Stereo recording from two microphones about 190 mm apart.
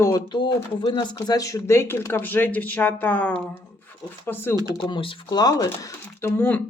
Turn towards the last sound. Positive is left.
turn(degrees=10)  # may be behind; listen again after turning